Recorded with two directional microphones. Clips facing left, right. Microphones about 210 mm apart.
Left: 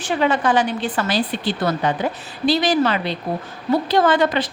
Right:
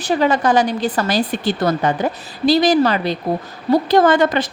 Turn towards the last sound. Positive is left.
turn(degrees=-45)  # may be behind; listen again after turning